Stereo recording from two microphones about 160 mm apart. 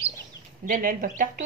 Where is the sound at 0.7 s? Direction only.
60° right (ahead or behind).